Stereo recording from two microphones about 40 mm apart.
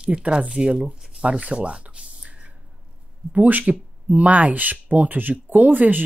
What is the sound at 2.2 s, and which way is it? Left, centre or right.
Squish, right.